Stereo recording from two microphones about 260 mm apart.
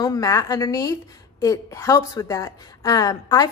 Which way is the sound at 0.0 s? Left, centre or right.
Centre.